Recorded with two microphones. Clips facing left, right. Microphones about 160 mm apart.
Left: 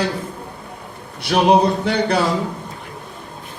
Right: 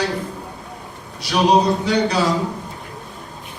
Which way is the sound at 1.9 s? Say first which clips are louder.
Right 1 dB; 55° left (ahead or behind).